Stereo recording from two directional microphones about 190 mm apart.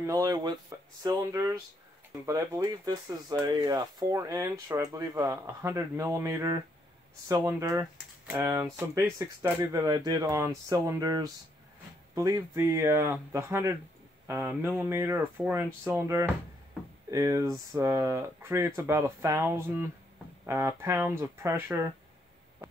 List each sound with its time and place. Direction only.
0.0 s speech: 20° right (ahead or behind)